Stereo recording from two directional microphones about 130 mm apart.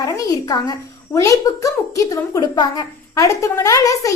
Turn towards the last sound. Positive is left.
turn(degrees=25)  # may be behind; listen again after turning